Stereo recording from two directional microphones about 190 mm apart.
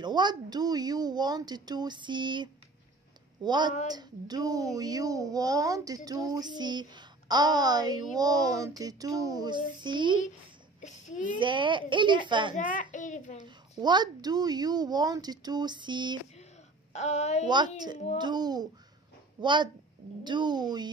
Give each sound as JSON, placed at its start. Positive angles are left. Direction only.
{"t": 0.0, "sound": "a woman's voice", "side_deg": -25}
{"t": 10.8, "sound": "speech", "side_deg": 40}
{"t": 11.3, "sound": "a woman's voice", "side_deg": -25}
{"t": 12.5, "sound": "a child's voice", "side_deg": 40}
{"t": 13.7, "sound": "a woman's voice", "side_deg": -20}
{"t": 16.9, "sound": "a child's voice", "side_deg": 35}
{"t": 17.5, "sound": "a woman's voice", "side_deg": -25}